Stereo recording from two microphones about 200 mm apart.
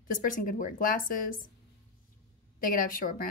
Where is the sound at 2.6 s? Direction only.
45° left (ahead or behind).